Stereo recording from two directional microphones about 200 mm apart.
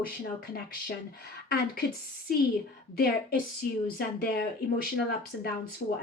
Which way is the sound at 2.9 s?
45° left (ahead or behind).